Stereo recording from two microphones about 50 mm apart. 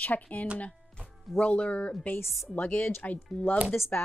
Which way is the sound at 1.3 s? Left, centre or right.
Left.